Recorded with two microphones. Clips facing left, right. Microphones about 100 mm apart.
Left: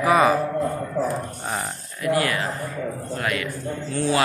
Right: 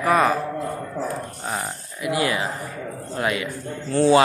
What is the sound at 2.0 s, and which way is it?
A man's voice, 15° right (ahead or behind).